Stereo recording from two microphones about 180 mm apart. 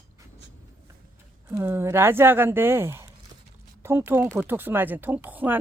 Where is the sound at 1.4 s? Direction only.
15° right (ahead or behind).